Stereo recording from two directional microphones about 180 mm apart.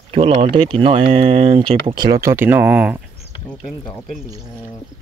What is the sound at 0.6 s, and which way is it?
Speech, 30° right (ahead or behind).